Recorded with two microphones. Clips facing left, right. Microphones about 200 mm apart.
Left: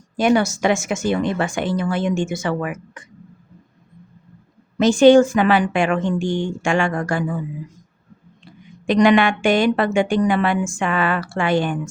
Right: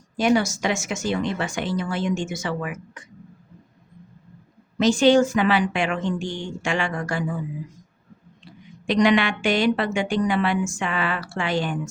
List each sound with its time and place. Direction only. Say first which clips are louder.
0.2 s a woman's voice: left 3 dB; 55° left (ahead or behind)
4.8 s a woman's voice: left 5 dB; 50° left (ahead or behind)
8.9 s a woman's voice: left 4 dB; 50° left (ahead or behind)